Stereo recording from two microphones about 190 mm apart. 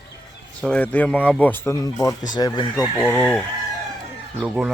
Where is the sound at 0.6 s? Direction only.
5° left (ahead or behind).